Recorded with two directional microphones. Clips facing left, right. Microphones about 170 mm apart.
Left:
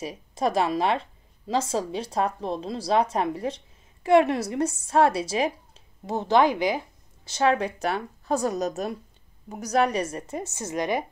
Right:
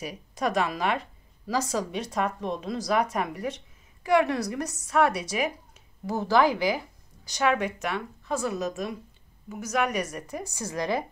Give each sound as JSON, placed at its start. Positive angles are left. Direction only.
{"t": 0.0, "sound": "a woman's voice", "side_deg": 25}